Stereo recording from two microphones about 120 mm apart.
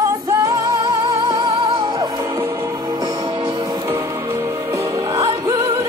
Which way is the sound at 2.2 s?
20° right (ahead or behind).